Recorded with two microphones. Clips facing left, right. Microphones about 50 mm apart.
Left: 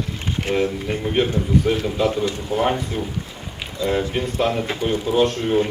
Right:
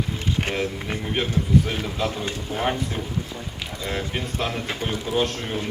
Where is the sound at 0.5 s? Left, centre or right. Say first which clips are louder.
Left 8 dB; right.